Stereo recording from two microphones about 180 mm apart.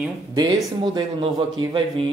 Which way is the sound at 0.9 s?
25° right (ahead or behind).